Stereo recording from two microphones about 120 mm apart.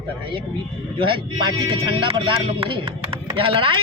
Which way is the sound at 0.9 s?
45° right (ahead or behind).